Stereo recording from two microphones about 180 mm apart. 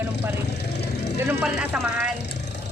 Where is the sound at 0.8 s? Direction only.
70° left (ahead or behind).